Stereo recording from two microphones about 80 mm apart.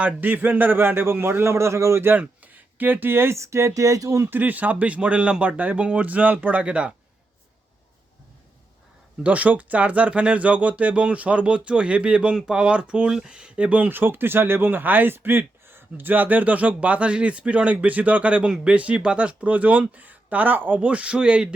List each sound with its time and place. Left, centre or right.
0.0 s a man's voice: right
2.2 s speech: centre; by 4.3 s right
4.3 s speech: right
9.2 s speech: centre